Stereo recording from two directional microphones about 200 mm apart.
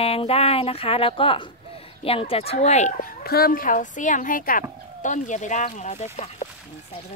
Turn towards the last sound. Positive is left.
turn(degrees=35)  # may be behind; listen again after turning